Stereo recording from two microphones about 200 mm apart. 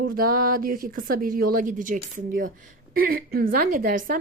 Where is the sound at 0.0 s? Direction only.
45° right (ahead or behind).